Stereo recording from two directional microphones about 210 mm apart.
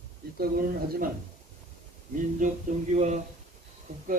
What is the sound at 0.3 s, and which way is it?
Speech, 45° right (ahead or behind).